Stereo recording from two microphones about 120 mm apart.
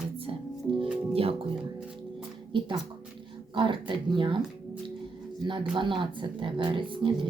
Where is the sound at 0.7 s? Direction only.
45° right (ahead or behind).